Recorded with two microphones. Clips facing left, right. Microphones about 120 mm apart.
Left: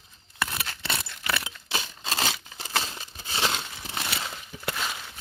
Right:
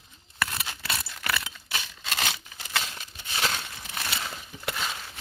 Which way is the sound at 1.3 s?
25° left (ahead or behind).